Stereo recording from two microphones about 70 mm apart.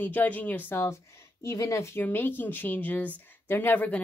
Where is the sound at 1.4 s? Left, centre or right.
Left.